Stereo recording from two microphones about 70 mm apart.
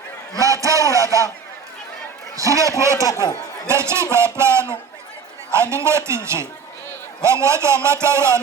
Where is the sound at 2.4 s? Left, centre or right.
Right.